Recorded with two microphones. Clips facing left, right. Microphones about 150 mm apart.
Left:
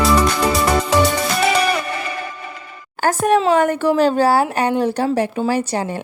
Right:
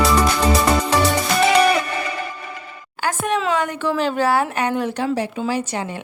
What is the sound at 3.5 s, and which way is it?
Speech, 50° left (ahead or behind).